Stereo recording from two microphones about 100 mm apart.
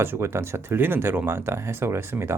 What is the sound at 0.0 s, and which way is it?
Speech, 25° right (ahead or behind).